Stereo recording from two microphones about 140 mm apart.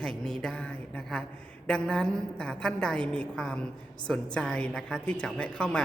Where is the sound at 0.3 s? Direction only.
5° left (ahead or behind).